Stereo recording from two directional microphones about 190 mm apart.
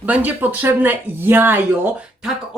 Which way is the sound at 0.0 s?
10° right (ahead or behind).